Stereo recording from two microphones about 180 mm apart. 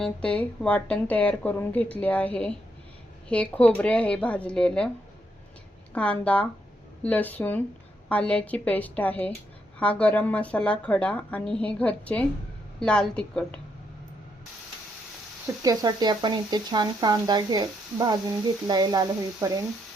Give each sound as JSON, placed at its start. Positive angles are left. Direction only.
{"t": 0.0, "sound": "speech", "side_deg": 5}
{"t": 5.9, "sound": "a woman's voice", "side_deg": 5}
{"t": 15.6, "sound": "speech", "side_deg": -20}